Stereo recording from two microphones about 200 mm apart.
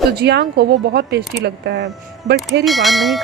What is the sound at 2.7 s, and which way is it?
Speech, centre (ahead or behind).